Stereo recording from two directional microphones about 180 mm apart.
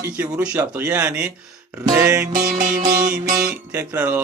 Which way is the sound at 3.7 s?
10° right (ahead or behind).